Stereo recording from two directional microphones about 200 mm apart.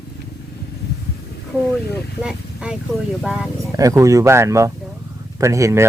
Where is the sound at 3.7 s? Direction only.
15° right (ahead or behind).